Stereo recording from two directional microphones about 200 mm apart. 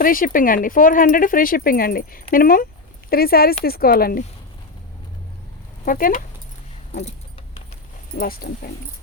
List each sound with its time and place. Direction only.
0.0 s speech: 45° left (ahead or behind)
5.8 s speech: 45° left (ahead or behind)
6.9 s keys jangling: 35° left (ahead or behind)
8.1 s speech: 45° left (ahead or behind)